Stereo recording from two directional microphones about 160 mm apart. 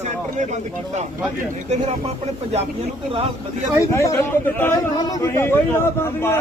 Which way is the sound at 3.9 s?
15° left (ahead or behind).